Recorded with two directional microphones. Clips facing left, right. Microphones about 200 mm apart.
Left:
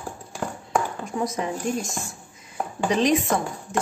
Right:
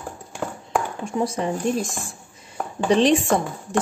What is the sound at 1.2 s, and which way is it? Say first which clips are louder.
A woman's voice: right 3 dB; 30° right (ahead or behind).